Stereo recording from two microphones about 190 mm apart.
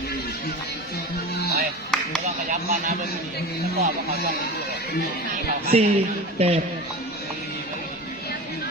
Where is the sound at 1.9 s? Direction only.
Centre (ahead or behind).